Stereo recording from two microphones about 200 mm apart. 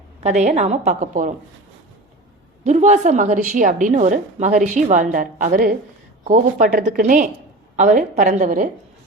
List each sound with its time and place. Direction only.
0.2 s a woman's voice: 35° right (ahead or behind)
2.6 s a woman's voice: 35° right (ahead or behind)